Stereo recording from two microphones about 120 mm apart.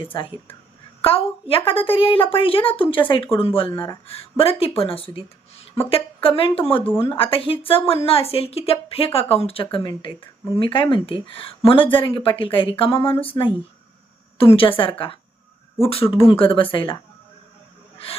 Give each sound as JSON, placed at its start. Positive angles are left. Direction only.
{"t": 0.0, "sound": "a woman's voice", "side_deg": 45}
{"t": 6.8, "sound": "speech", "side_deg": 20}
{"t": 7.1, "sound": "a woman's voice", "side_deg": 50}
{"t": 14.5, "sound": "a woman's voice", "side_deg": 45}
{"t": 17.9, "sound": "a sound", "side_deg": 50}